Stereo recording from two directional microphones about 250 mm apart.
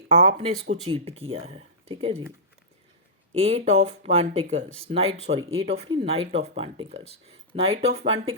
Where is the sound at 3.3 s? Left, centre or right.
Right.